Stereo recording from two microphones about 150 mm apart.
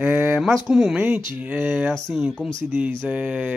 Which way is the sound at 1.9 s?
5° left (ahead or behind).